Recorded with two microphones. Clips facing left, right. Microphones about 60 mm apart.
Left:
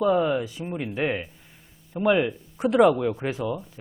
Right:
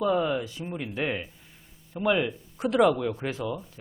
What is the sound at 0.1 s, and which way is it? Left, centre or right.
Speech, centre.